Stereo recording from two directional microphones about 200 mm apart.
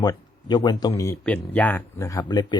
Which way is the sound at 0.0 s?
20° left (ahead or behind).